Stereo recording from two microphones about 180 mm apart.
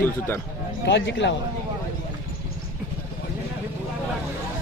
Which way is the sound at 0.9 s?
80° left.